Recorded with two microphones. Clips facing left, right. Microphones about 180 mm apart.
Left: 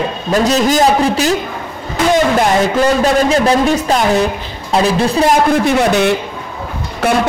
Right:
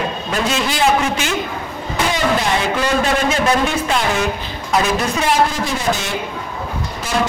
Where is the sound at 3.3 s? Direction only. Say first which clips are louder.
Left 5 dB; 40° left (ahead or behind).